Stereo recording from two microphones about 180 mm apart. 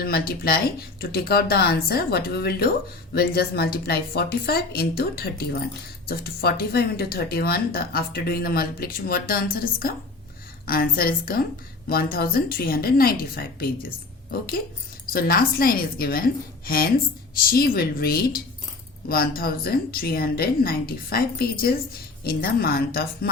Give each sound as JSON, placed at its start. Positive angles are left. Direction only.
{"t": 0.0, "sound": "speech", "side_deg": 60}